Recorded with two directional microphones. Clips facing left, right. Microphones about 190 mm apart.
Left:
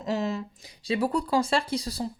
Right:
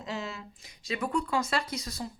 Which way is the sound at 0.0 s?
40° left (ahead or behind).